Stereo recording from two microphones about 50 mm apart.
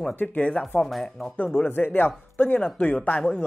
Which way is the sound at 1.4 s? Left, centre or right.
Left.